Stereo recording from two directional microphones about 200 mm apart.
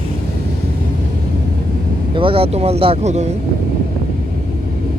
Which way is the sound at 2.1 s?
25° right (ahead or behind).